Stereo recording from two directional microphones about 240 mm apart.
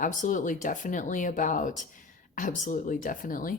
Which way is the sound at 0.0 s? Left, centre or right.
Left.